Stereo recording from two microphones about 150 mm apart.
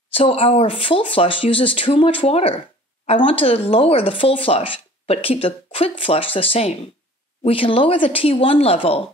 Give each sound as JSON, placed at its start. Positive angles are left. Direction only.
{"t": 0.1, "sound": "speech", "side_deg": 40}